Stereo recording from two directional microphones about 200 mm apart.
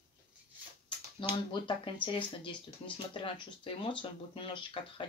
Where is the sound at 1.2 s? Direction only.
25° left (ahead or behind).